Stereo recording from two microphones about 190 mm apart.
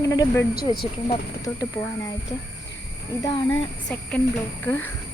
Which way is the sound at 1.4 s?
15° left (ahead or behind).